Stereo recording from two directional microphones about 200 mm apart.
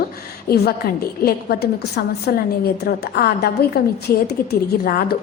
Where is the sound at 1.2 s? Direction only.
50° left (ahead or behind).